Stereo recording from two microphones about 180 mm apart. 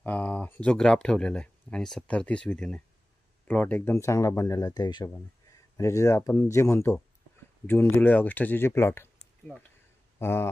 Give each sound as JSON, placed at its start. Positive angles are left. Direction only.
{"t": 0.0, "sound": "speech", "side_deg": 10}